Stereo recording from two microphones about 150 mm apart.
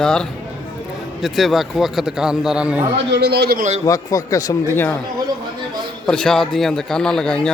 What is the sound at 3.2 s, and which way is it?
Speech, 90° right.